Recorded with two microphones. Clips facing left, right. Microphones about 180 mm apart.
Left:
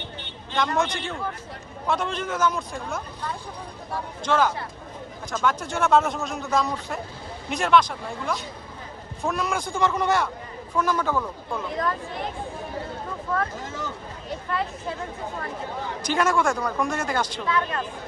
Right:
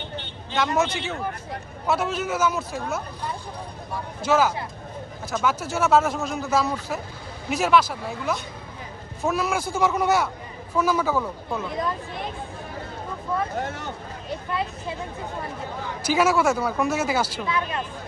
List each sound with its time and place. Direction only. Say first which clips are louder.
0.5 s a man's voice: right 1 dB; 5° right (ahead or behind)
4.2 s a man's voice: right 2 dB; 5° right (ahead or behind)
13.6 s speech: right 3 dB; 65° right (ahead or behind)
16.0 s speech: right 2 dB; 5° right (ahead or behind)